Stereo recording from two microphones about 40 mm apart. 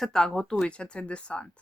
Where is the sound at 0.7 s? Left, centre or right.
Left.